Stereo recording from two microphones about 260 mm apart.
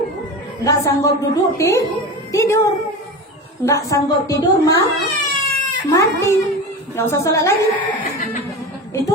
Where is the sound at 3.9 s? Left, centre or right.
Centre.